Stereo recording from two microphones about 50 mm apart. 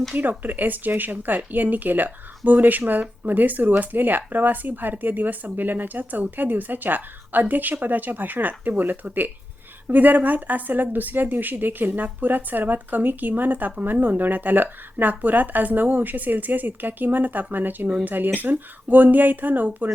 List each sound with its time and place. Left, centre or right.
0.2 s speech: right